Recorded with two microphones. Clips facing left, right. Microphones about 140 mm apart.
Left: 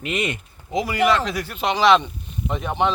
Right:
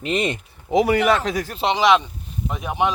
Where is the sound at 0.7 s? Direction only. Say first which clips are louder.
Right 3 dB; 65° right (ahead or behind); by 1.6 s 40° right (ahead or behind).